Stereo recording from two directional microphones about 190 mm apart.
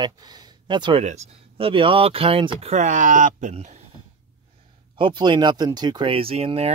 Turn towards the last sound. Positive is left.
turn(degrees=-30)  # may be behind; listen again after turning